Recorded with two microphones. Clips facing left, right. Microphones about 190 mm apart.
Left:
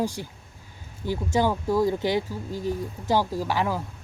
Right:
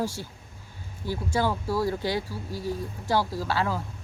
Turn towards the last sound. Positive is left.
turn(degrees=15)  # may be behind; listen again after turning